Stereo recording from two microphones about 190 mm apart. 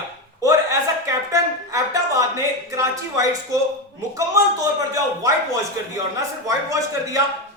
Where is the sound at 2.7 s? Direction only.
15° right (ahead or behind).